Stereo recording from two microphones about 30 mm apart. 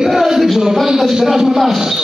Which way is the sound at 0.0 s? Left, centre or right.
Centre.